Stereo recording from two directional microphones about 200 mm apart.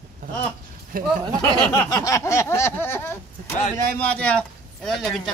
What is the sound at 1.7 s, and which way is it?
Speech, 15° left (ahead or behind).